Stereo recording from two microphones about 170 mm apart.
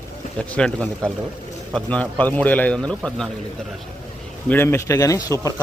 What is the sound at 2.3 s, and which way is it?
Speech, 10° left (ahead or behind).